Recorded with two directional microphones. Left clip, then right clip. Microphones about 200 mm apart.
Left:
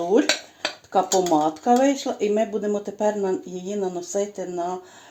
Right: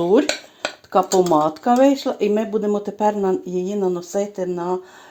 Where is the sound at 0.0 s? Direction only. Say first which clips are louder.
Right 3 dB; 40° right (ahead or behind).